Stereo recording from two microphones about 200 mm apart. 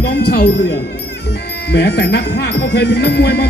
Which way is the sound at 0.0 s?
55° left (ahead or behind).